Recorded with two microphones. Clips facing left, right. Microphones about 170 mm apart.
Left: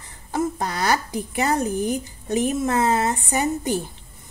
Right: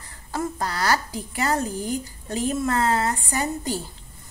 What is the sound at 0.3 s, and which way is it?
A woman's voice, 20° left (ahead or behind).